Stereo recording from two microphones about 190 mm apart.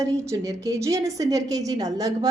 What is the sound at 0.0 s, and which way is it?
A woman's voice, 15° right (ahead or behind).